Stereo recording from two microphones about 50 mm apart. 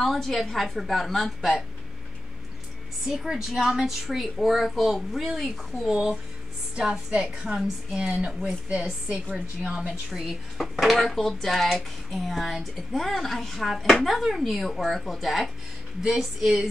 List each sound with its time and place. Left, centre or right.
0.0 s speech: centre
3.1 s a woman's voice: centre
7.5 s a woman's voice: centre
8.5 s a woman's voice: right
10.1 s a woman's voice: centre